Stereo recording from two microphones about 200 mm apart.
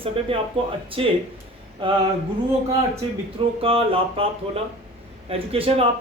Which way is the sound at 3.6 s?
30° right (ahead or behind).